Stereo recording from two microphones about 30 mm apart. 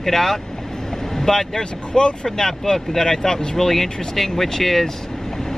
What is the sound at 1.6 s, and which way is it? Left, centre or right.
Speech, left.